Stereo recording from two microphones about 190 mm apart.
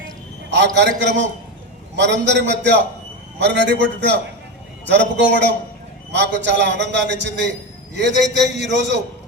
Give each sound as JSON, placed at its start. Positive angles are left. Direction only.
{"t": 0.5, "sound": "a man's voice", "side_deg": -65}